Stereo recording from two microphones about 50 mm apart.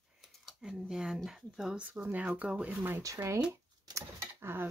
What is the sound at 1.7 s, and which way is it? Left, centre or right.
Speech, right.